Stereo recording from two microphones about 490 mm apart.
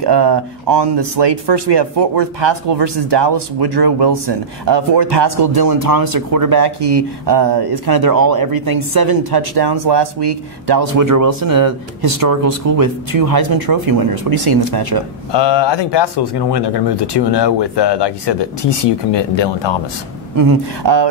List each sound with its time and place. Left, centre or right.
0.0 s speech: right
10.8 s speech: right
15.3 s speech: left
20.3 s speech: right